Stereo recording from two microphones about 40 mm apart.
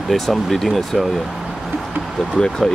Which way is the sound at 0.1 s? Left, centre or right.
Centre.